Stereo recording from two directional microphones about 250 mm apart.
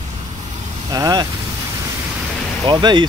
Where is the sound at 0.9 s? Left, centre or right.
Centre.